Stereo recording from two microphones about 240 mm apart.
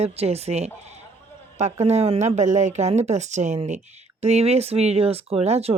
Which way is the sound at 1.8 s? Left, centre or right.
Right.